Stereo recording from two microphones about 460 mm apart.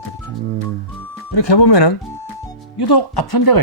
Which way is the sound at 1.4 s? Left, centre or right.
Left.